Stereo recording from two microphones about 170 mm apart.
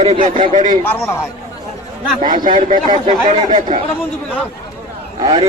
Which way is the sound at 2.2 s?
50° right (ahead or behind).